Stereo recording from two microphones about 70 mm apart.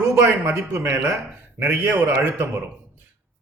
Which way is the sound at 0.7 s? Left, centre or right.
Right.